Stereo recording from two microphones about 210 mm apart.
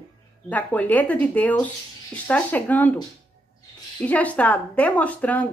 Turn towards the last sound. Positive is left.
turn(degrees=5)  # may be behind; listen again after turning